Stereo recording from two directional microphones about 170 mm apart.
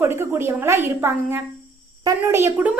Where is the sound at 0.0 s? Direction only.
15° right (ahead or behind).